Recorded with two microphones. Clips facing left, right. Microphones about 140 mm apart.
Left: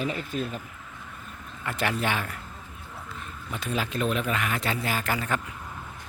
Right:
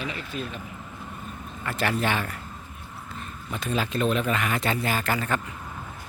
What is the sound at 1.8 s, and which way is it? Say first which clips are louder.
Speech: right 2 dB; 15° left (ahead or behind).